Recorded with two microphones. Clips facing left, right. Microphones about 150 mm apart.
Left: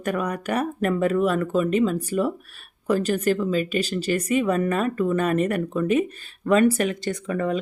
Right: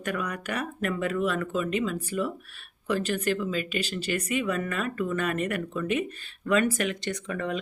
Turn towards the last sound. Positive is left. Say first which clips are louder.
# left 6 dB
turn(degrees=35)  # may be behind; listen again after turning